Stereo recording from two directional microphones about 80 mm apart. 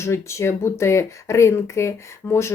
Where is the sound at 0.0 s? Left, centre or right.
Left.